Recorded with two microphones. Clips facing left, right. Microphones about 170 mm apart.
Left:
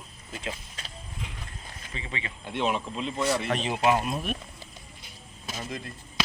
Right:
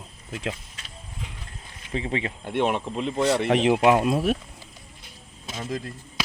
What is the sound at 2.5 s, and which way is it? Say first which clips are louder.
Speech: right 4 dB; 60° right (ahead or behind).